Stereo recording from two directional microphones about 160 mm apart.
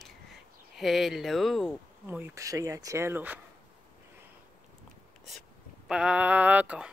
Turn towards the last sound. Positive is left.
turn(degrees=-10)  # may be behind; listen again after turning